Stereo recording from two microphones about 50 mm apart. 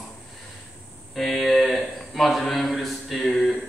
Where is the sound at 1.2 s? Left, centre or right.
Centre.